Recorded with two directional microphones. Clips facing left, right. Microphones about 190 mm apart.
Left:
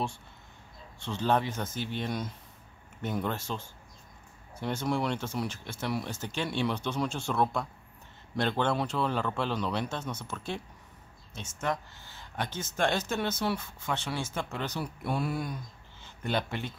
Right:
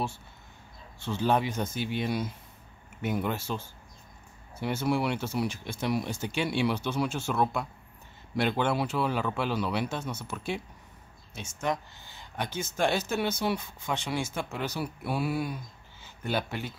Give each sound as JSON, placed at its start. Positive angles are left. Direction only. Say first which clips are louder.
{"t": 0.9, "sound": "speech", "louder": "right 1 dB", "side_deg": -5}